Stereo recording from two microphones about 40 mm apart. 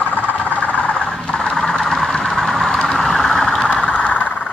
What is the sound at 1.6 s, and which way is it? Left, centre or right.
Vehicle, centre.